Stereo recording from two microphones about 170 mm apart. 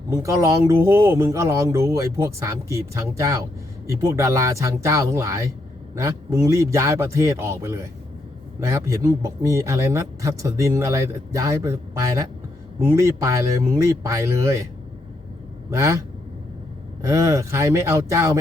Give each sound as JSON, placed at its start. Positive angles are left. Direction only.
{"t": 0.2, "sound": "speech", "side_deg": -20}
{"t": 15.7, "sound": "speech", "side_deg": -15}